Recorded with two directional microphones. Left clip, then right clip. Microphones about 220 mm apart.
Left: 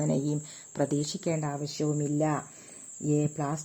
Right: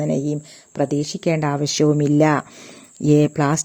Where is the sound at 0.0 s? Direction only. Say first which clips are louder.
Right 8 dB; 20° right (ahead or behind).